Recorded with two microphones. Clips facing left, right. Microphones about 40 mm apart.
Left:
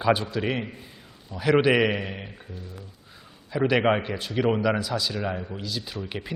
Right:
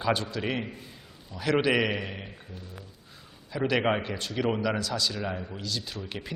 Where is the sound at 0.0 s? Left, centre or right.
Centre.